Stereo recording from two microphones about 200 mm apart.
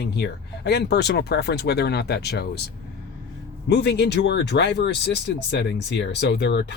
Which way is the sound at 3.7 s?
55° left (ahead or behind).